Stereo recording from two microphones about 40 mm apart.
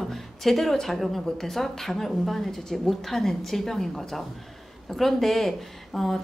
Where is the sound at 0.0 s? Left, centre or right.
Centre.